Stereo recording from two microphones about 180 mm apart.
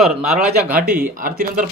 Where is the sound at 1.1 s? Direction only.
50° right (ahead or behind).